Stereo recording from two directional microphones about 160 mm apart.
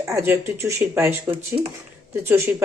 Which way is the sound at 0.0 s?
15° right (ahead or behind).